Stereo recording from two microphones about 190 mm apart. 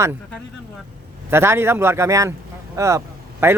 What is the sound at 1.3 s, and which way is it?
A man's voice, 15° right (ahead or behind).